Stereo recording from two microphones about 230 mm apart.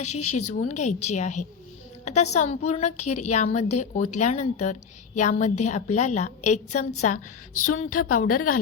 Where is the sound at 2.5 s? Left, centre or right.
Left.